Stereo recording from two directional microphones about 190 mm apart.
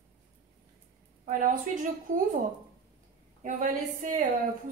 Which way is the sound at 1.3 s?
40° right (ahead or behind).